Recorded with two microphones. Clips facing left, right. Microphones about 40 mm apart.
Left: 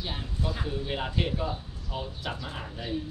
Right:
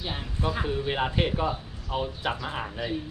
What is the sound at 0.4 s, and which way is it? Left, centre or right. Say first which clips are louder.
Speech: right 5 dB; right.